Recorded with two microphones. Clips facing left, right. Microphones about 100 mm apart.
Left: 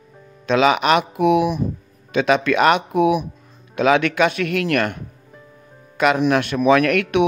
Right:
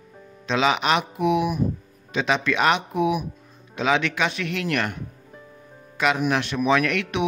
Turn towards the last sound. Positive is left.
turn(degrees=60)  # may be behind; listen again after turning